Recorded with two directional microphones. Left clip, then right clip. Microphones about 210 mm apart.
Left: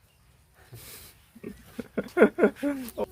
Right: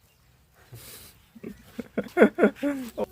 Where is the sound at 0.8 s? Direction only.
10° right (ahead or behind).